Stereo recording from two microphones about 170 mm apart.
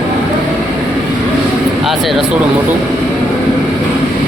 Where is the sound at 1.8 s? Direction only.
Centre (ahead or behind).